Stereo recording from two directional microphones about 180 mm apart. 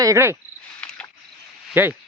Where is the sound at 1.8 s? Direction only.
10° right (ahead or behind).